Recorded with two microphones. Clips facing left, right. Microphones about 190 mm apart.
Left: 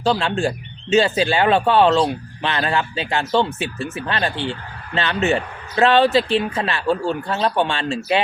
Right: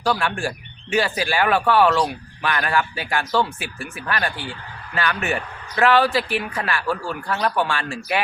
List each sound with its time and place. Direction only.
0.0 s speech: 25° left (ahead or behind)